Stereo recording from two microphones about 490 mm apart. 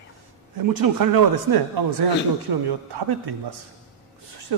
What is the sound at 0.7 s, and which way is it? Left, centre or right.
Speech, right.